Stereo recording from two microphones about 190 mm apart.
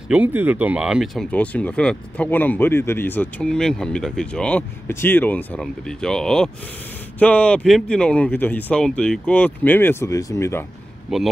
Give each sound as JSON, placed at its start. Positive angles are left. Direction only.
{"t": 0.1, "sound": "speech", "side_deg": -10}
{"t": 11.1, "sound": "speech", "side_deg": 0}